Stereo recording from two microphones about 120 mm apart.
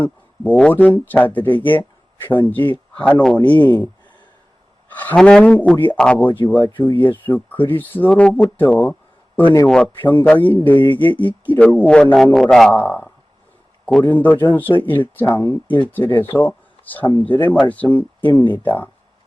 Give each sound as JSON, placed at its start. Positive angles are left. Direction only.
{"t": 0.0, "sound": "speech", "side_deg": 10}
{"t": 1.7, "sound": "a sound", "side_deg": 15}
{"t": 2.5, "sound": "speech", "side_deg": 15}
{"t": 4.9, "sound": "a man's voice", "side_deg": 15}